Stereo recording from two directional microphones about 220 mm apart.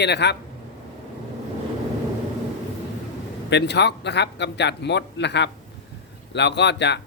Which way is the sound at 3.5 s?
50° left (ahead or behind).